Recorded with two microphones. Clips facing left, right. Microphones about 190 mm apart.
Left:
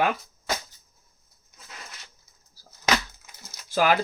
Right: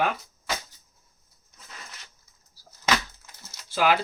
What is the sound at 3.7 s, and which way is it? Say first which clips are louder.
Speech: left 1 dB; 45° left (ahead or behind).